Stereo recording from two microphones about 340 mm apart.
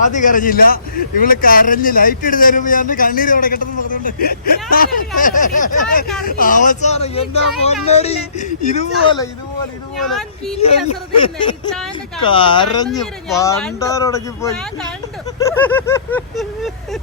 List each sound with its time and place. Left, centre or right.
0.0 s a man's voice: left
10.0 s vehicle: centre
10.6 s speech: centre
15.4 s vehicle: centre